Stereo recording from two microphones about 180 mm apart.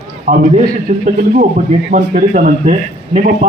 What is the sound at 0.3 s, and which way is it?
A man's voice, 50° right (ahead or behind).